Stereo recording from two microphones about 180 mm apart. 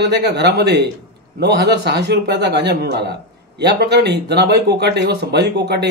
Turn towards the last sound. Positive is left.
turn(degrees=-65)  # may be behind; listen again after turning